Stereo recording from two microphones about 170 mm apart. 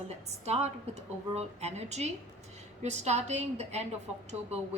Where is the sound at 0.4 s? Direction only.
40° right (ahead or behind).